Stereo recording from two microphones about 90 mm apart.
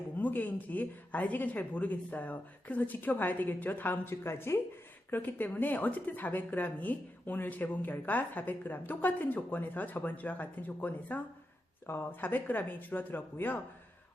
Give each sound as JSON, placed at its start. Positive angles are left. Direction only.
{"t": 0.2, "sound": "speech", "side_deg": 20}